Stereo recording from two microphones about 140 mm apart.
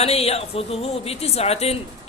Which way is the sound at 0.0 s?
45° left (ahead or behind).